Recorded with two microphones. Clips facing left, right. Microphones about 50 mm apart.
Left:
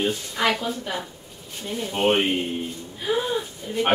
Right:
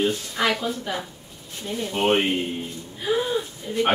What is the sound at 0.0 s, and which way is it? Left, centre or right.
A woman's voice, centre.